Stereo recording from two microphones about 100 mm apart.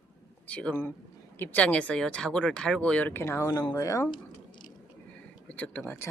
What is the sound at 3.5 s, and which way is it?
Speech, 40° left (ahead or behind).